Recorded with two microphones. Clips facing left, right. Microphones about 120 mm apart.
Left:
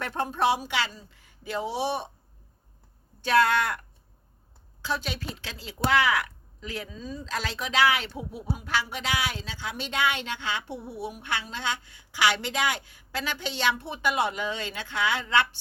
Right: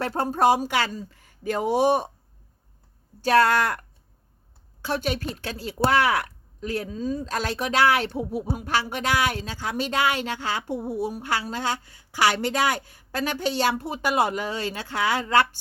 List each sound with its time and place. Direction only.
0.0 s speech: 35° right (ahead or behind)
3.2 s speech: 40° right (ahead or behind)
4.8 s speech: 55° right (ahead or behind)